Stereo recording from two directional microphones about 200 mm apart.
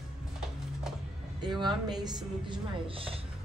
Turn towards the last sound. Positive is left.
turn(degrees=-25)  # may be behind; listen again after turning